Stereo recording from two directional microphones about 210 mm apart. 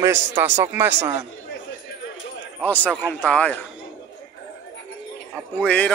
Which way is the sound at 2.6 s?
5° left (ahead or behind).